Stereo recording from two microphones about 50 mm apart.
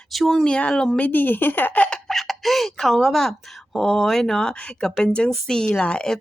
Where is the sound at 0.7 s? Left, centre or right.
Centre.